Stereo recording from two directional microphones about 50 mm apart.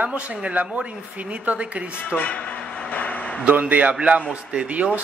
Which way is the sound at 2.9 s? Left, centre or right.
Left.